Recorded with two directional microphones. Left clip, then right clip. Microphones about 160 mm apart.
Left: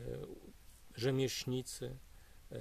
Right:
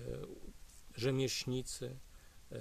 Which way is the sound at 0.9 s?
15° left (ahead or behind).